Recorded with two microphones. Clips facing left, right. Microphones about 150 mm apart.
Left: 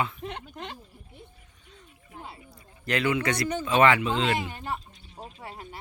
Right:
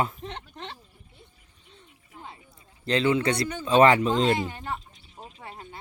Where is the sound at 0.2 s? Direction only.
10° left (ahead or behind).